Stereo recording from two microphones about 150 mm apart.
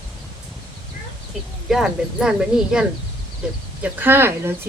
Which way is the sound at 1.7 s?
5° right (ahead or behind).